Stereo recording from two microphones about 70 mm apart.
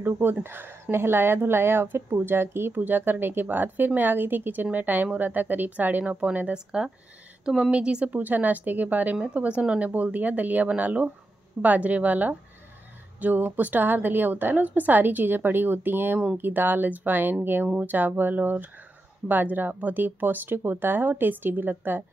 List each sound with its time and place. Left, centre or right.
0.0 s speech: right